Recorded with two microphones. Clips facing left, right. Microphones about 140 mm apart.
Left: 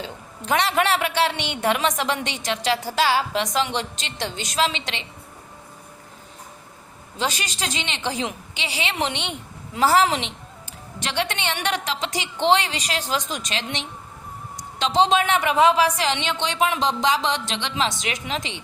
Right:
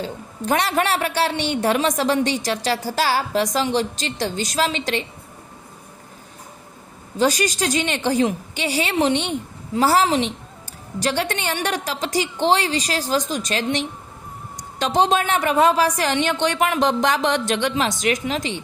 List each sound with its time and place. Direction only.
0.0 s a woman's voice: 40° right (ahead or behind)
7.2 s a woman's voice: 40° right (ahead or behind)